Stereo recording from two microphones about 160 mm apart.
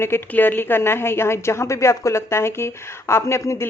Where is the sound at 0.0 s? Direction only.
15° left (ahead or behind).